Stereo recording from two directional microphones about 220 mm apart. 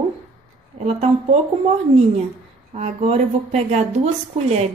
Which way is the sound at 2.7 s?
30° right (ahead or behind).